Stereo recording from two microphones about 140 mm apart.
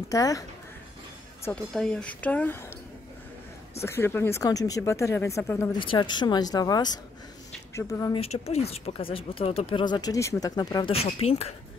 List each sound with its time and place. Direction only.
0.1 s speech: 25° left (ahead or behind)
1.5 s a woman's voice: 5° left (ahead or behind)
3.8 s speech: 15° left (ahead or behind)
5.7 s speech: 35° left (ahead or behind)
8.1 s speech: 45° left (ahead or behind); by 10.9 s 30° left (ahead or behind)
10.9 s speech: 45° left (ahead or behind)